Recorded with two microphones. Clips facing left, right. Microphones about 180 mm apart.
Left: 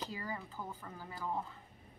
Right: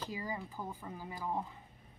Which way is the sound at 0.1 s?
15° right (ahead or behind).